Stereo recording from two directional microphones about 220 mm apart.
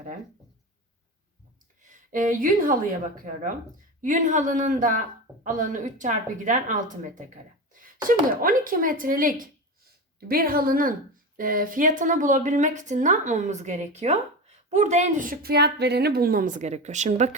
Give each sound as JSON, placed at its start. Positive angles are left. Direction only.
{"t": 1.8, "sound": "speech", "side_deg": -35}
{"t": 4.0, "sound": "a woman's voice", "side_deg": -35}